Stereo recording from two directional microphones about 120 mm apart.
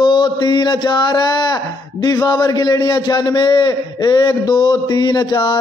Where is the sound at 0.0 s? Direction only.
40° left (ahead or behind).